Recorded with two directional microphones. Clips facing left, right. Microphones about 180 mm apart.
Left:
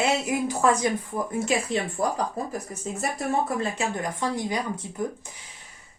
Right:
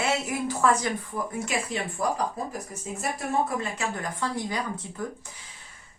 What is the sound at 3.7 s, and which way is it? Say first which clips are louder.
A woman's voice: left 3 dB; 20° left (ahead or behind).